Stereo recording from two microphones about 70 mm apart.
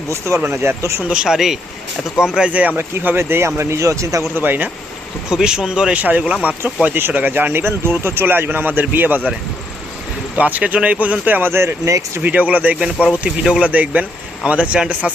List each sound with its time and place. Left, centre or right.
0.4 s speech: right
1.0 s speech: centre
2.5 s speech: right
4.4 s speech: right
5.3 s speech: centre; by 9.3 s right
10.3 s speech: centre; by 12.2 s right
12.2 s speech: right